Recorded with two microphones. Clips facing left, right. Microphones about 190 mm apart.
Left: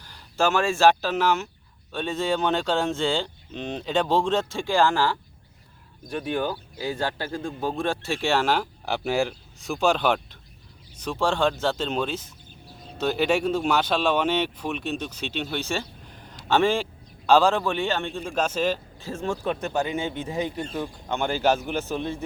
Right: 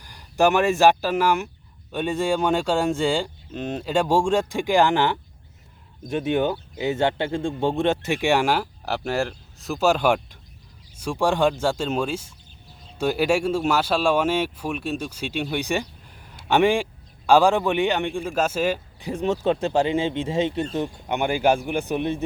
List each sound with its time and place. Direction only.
0.0 s a man's voice: 15° right (ahead or behind)